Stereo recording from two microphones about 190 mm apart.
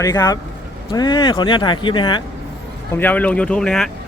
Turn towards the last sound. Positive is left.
turn(degrees=5)  # may be behind; listen again after turning